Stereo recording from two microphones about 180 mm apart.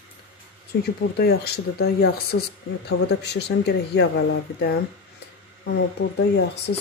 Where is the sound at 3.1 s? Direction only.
70° left (ahead or behind).